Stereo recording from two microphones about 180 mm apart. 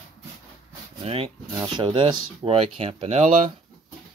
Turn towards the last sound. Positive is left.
turn(degrees=-35)  # may be behind; listen again after turning